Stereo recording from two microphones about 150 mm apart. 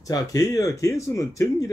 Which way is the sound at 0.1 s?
25° left (ahead or behind).